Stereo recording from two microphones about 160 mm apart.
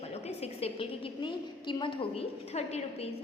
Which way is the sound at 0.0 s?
40° left (ahead or behind).